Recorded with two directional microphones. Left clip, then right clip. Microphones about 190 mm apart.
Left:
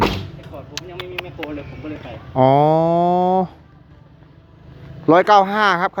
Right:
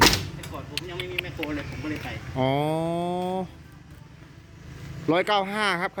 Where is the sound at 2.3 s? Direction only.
25° left (ahead or behind).